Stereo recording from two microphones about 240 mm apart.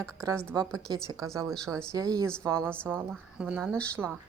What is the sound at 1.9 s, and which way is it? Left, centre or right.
A woman's voice, centre.